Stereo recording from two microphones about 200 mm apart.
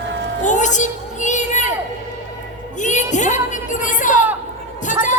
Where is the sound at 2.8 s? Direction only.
35° left (ahead or behind).